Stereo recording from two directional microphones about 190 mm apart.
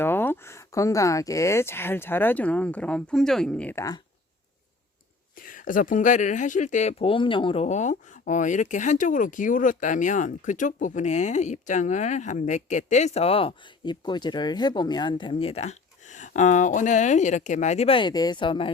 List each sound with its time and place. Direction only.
0.0 s speech: 10° left (ahead or behind)
5.4 s speech: 45° left (ahead or behind); by 18.7 s 25° left (ahead or behind)